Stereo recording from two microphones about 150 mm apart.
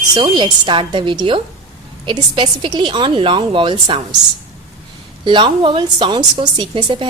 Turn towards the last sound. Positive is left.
turn(degrees=-35)  # may be behind; listen again after turning